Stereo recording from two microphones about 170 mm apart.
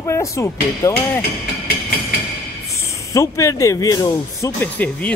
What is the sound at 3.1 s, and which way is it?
Speech, 20° left (ahead or behind).